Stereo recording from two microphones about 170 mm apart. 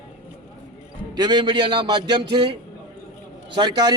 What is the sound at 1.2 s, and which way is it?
A man's voice, 25° right (ahead or behind).